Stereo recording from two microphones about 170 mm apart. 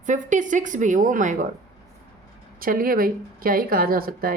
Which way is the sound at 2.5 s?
55° right (ahead or behind).